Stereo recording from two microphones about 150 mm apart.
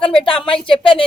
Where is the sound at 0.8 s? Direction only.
35° left (ahead or behind).